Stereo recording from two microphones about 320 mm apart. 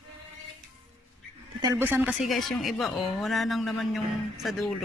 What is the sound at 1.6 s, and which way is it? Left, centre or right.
Speech, centre.